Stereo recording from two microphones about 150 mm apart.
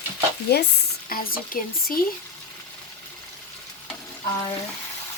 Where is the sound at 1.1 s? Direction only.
75° left (ahead or behind).